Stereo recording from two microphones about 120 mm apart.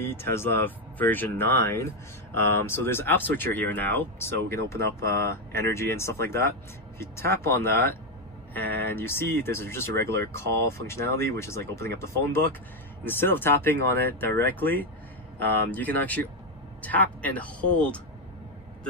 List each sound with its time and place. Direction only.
0.0 s speech: 20° left (ahead or behind)